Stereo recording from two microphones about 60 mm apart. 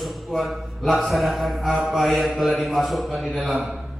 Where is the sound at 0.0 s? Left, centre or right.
Centre.